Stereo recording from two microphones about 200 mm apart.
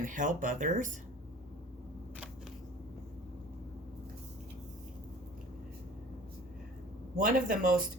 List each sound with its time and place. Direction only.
0.0 s speech: 40° right (ahead or behind)
7.2 s speech: 45° right (ahead or behind)